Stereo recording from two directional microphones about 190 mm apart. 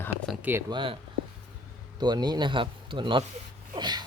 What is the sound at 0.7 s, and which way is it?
Speech, 25° right (ahead or behind).